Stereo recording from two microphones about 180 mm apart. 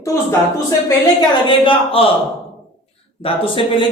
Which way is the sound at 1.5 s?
30° left (ahead or behind).